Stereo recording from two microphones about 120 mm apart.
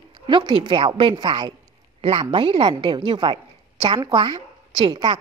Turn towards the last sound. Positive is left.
turn(degrees=-40)  # may be behind; listen again after turning